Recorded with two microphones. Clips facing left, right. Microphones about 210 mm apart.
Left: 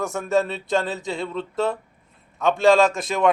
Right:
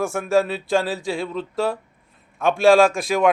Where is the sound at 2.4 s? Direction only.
20° left (ahead or behind).